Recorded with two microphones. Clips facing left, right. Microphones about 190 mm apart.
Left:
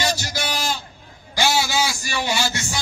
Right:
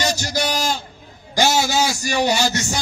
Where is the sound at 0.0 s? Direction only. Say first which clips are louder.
Right 3 dB; 45° right (ahead or behind).